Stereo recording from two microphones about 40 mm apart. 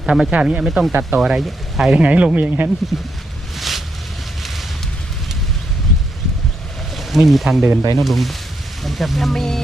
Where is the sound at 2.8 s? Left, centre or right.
Centre.